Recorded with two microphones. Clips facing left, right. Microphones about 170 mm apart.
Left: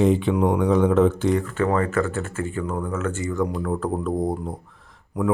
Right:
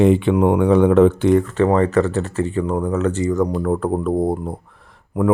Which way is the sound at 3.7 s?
55° right (ahead or behind).